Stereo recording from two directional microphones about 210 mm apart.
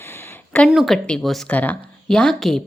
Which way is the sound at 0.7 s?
Centre (ahead or behind).